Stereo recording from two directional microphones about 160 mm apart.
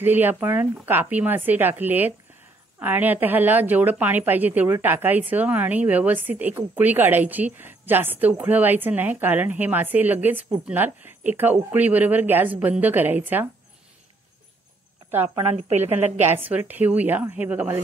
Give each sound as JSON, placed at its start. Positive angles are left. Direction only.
{"t": 0.0, "sound": "a woman's voice", "side_deg": -10}
{"t": 15.0, "sound": "a woman's voice", "side_deg": -10}
{"t": 16.3, "sound": "a woman's voice", "side_deg": -10}